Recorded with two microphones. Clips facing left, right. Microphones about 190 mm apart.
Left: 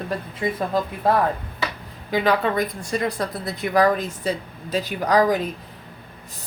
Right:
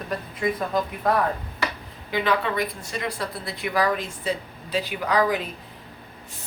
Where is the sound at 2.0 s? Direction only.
40° left (ahead or behind).